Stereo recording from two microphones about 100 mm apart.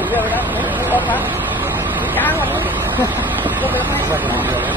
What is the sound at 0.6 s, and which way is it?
Vehicle, 20° right (ahead or behind).